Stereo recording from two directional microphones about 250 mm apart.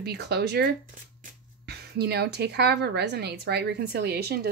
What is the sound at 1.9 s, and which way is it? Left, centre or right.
Speech, right.